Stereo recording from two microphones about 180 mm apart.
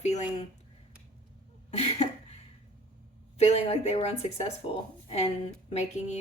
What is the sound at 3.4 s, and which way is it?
Speech, 35° left (ahead or behind).